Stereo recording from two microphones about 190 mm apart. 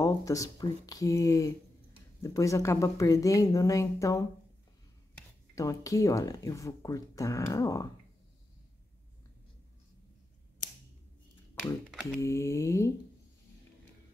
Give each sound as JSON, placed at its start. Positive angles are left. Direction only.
{"t": 0.0, "sound": "speech", "side_deg": 15}
{"t": 5.5, "sound": "speech", "side_deg": 15}
{"t": 11.9, "sound": "mantra", "side_deg": 0}
{"t": 12.2, "sound": "speech", "side_deg": 15}